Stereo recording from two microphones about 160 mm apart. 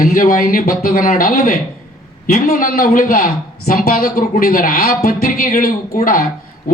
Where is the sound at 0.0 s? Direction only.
60° left (ahead or behind).